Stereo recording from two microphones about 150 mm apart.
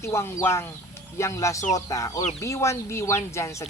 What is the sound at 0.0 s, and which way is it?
Speech, 20° left (ahead or behind).